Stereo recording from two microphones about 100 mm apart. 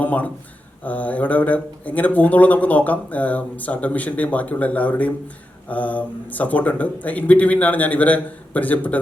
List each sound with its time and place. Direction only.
0.0 s speech: 15° left (ahead or behind)